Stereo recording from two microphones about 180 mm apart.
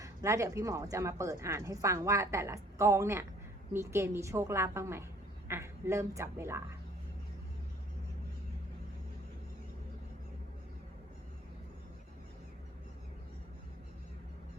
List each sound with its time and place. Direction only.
0.0 s speech: 15° right (ahead or behind)